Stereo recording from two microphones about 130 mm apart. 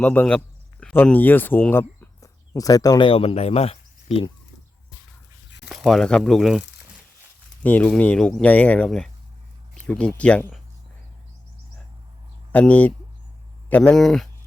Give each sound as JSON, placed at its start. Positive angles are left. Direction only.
{"t": 0.0, "sound": "speech", "side_deg": 10}
{"t": 2.5, "sound": "speech", "side_deg": 30}
{"t": 3.1, "sound": "speech", "side_deg": 50}
{"t": 5.6, "sound": "speech", "side_deg": 0}
{"t": 7.6, "sound": "speech", "side_deg": 15}
{"t": 12.5, "sound": "speech", "side_deg": 10}